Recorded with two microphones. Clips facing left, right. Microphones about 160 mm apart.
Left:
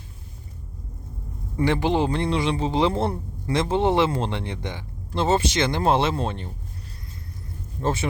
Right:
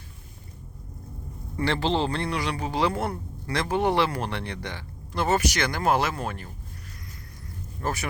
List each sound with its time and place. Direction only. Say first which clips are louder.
1.5 s a man's voice: left 4 dB; 15° left (ahead or behind)
7.8 s speech: left 5 dB; 25° left (ahead or behind)